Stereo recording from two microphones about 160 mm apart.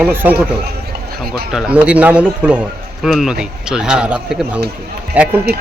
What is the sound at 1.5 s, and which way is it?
Speech, 5° right (ahead or behind).